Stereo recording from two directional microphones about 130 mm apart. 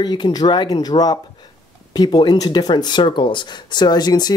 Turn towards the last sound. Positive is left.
turn(degrees=30)  # may be behind; listen again after turning